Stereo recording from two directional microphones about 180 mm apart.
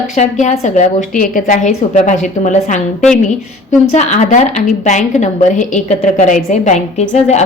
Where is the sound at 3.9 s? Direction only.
40° left (ahead or behind).